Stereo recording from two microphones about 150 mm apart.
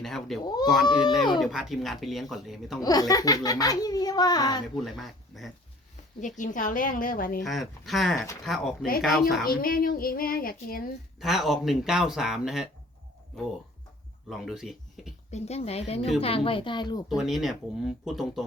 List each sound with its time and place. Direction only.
0.0 s speech: centre (ahead or behind)
2.8 s a child's voice: 25° left (ahead or behind)
4.6 s speech: centre (ahead or behind)
6.1 s a woman's voice: 55° left (ahead or behind)
7.4 s speech: centre (ahead or behind)
9.4 s speech: 80° left
11.2 s speech: centre (ahead or behind)
14.3 s speech: centre (ahead or behind)
15.3 s a woman's voice: 45° left (ahead or behind); by 17.2 s 30° left (ahead or behind)
17.2 s speech: centre (ahead or behind)